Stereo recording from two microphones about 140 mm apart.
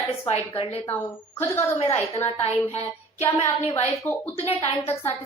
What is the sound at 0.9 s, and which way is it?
Speech, 15° left (ahead or behind).